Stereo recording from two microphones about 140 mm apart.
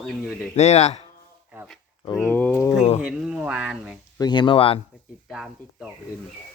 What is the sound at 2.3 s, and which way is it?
Speech, 15° left (ahead or behind).